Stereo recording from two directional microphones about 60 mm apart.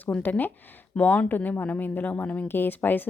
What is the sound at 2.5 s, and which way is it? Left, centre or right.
Speech, left.